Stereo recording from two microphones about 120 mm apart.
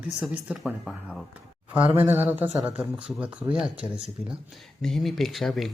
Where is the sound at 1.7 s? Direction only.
15° right (ahead or behind).